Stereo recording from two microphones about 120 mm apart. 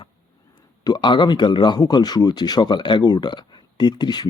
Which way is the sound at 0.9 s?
40° left (ahead or behind).